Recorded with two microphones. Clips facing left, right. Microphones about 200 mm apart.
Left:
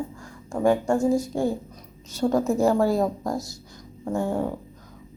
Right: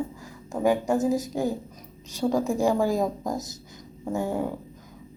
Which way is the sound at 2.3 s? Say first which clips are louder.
Left 2 dB; 10° right (ahead or behind).